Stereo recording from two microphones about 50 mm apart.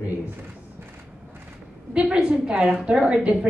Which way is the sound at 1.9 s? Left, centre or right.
Centre.